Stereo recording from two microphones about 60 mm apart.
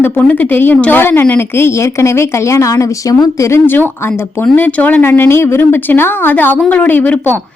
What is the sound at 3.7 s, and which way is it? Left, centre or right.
A woman's voice, left.